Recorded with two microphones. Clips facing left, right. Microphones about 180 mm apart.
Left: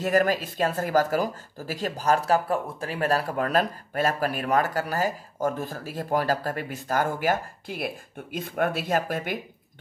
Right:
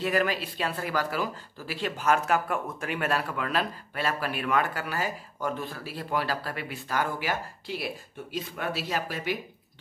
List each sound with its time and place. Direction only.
0.0 s speech: 45° left (ahead or behind)